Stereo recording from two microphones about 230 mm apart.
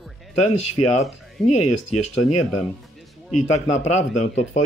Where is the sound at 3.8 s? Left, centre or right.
Left.